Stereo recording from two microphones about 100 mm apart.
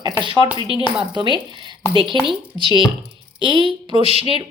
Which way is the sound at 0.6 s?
60° right (ahead or behind).